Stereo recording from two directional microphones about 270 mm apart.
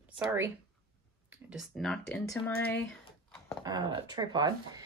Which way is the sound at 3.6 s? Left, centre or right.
Centre.